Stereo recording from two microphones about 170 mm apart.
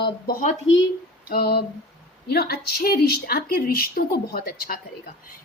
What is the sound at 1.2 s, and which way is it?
A woman's voice, 65° left (ahead or behind).